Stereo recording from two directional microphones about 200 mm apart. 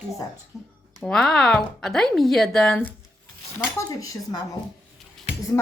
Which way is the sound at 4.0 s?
15° left (ahead or behind).